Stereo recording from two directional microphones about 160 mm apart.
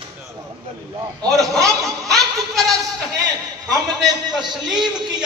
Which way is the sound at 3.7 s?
25° right (ahead or behind).